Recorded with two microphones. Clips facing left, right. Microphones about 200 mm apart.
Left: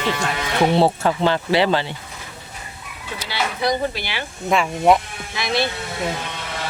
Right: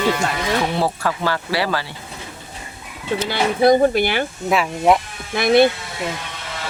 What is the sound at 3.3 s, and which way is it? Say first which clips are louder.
Speech: right 7 dB; 50° right (ahead or behind).